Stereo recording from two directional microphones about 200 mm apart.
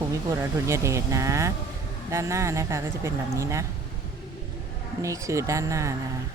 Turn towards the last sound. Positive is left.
turn(degrees=-15)  # may be behind; listen again after turning